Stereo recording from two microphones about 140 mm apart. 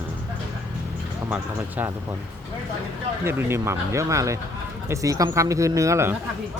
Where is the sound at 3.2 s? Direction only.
20° right (ahead or behind).